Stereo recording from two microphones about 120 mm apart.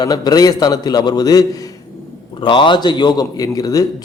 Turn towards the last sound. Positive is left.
turn(degrees=30)  # may be behind; listen again after turning